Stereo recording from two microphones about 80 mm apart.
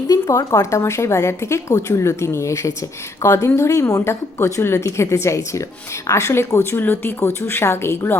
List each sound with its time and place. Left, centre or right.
0.1 s a woman's voice: left